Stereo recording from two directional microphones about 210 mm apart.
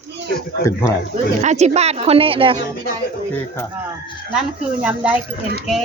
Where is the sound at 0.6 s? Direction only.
15° left (ahead or behind).